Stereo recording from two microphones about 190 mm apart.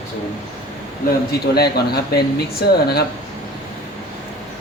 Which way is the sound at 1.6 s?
55° left (ahead or behind).